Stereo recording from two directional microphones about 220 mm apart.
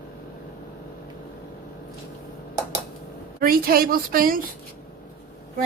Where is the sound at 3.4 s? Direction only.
40° right (ahead or behind).